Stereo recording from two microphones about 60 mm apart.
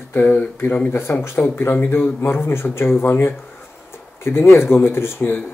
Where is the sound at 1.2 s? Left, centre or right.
Left.